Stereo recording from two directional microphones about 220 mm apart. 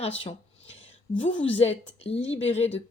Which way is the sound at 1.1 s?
25° left (ahead or behind).